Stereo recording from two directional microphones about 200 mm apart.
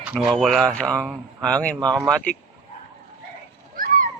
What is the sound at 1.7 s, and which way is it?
Speech, 20° right (ahead or behind).